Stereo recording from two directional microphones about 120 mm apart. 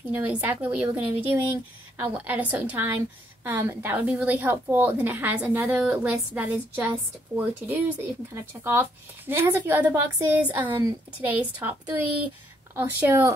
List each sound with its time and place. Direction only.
0.1 s a woman's voice: 15° right (ahead or behind)